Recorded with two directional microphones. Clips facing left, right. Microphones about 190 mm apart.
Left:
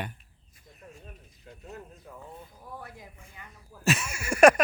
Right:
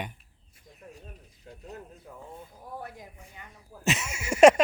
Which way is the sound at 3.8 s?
20° right (ahead or behind).